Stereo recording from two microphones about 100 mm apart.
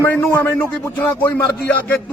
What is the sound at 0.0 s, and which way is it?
A man's voice, 25° left (ahead or behind).